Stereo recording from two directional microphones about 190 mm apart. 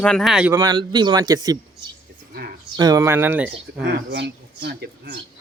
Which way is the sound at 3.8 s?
65° right (ahead or behind).